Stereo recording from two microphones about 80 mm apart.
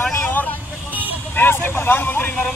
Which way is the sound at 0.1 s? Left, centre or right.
Left.